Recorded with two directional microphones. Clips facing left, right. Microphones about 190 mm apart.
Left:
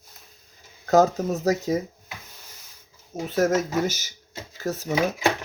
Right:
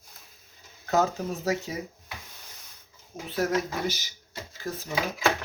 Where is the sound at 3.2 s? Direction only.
45° left (ahead or behind).